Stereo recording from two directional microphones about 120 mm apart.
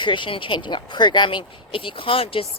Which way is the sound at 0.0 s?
40° left (ahead or behind).